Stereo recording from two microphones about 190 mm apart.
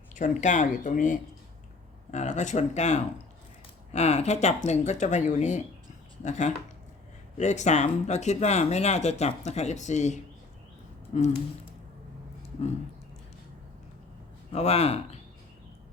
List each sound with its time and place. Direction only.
0.1 s speech: 40° left (ahead or behind)
14.5 s speech: 35° left (ahead or behind)